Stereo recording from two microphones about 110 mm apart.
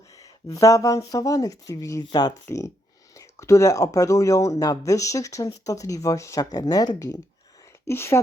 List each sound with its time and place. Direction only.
0.2 s speech: 30° left (ahead or behind)
7.9 s speech: 25° left (ahead or behind)